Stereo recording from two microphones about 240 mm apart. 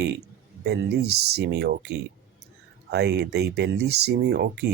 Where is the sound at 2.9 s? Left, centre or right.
Right.